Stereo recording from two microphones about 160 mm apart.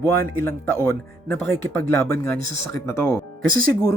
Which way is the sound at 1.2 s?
5° left (ahead or behind).